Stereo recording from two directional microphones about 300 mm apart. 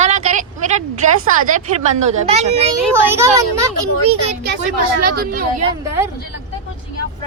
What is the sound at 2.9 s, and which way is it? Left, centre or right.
Speech, centre.